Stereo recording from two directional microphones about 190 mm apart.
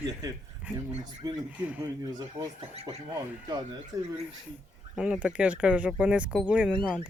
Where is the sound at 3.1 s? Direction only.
20° right (ahead or behind).